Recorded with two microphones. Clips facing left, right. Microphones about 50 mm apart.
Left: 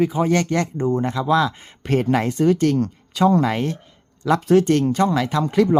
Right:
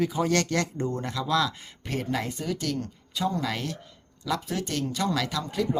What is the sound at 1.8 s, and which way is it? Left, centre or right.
Speech, left.